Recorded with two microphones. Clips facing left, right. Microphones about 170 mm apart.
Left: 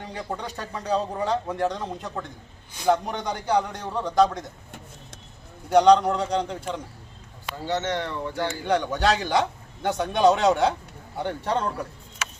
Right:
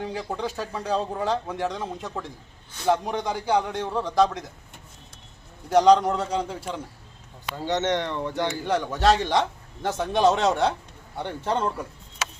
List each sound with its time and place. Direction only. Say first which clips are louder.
0.0 s speech: right 3 dB; 5° right (ahead or behind)
5.6 s speech: left 1 dB; centre (ahead or behind)
7.6 s speech: right 2 dB; 20° right (ahead or behind)
8.6 s speech: right 1 dB; centre (ahead or behind)